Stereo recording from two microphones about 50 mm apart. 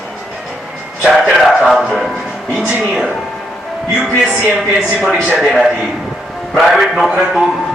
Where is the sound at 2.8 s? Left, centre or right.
Centre.